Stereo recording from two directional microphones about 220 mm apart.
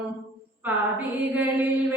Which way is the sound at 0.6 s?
10° right (ahead or behind).